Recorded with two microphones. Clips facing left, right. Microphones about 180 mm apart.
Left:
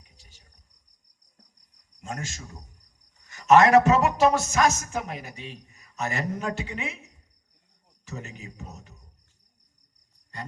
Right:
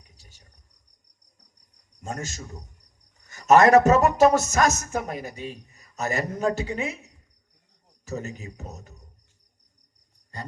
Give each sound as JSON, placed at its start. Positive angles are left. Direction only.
{"t": 2.0, "sound": "speech", "side_deg": -40}
{"t": 8.0, "sound": "speech", "side_deg": -40}